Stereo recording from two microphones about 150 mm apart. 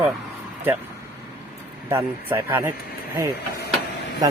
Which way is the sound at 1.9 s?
15° right (ahead or behind).